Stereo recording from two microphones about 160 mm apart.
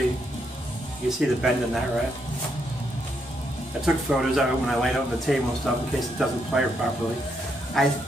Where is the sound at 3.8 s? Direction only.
5° right (ahead or behind).